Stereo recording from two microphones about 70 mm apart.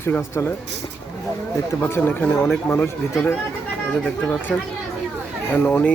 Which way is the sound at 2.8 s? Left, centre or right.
Left.